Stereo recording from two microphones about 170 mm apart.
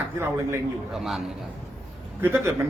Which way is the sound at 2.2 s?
15° right (ahead or behind).